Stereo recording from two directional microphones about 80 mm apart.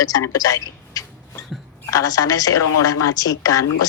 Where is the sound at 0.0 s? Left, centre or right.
Left.